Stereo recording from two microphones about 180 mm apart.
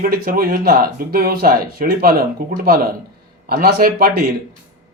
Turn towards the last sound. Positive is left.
turn(degrees=-60)  # may be behind; listen again after turning